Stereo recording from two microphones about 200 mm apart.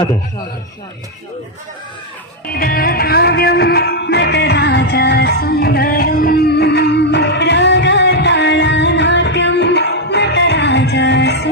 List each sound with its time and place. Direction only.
2.5 s music: 45° left (ahead or behind)